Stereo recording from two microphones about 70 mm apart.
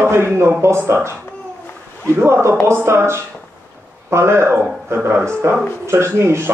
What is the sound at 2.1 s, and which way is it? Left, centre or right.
Speech, right.